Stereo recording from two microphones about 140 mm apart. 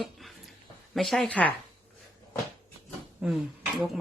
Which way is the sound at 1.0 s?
Centre (ahead or behind).